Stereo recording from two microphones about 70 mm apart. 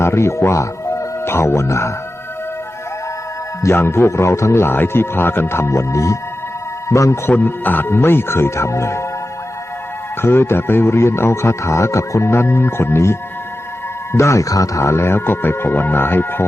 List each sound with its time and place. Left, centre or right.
0.0 s speech: left
3.6 s a man's voice: left
7.3 s speech: left
10.2 s speech: left